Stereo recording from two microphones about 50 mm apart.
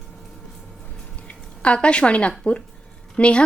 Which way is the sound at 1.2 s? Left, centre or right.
Left.